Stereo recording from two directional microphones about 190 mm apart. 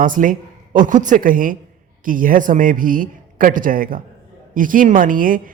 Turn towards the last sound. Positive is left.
turn(degrees=-45)  # may be behind; listen again after turning